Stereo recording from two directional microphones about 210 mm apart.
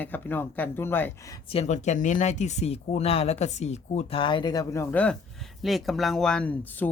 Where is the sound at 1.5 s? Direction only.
30° left (ahead or behind).